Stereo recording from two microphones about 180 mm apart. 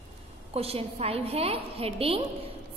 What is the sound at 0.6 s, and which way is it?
A woman's voice, 35° right (ahead or behind).